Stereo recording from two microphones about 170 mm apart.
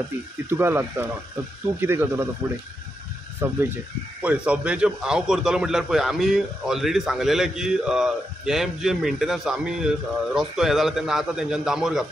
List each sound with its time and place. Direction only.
0.5 s speech: 15° right (ahead or behind)
3.4 s a man's voice: 15° right (ahead or behind)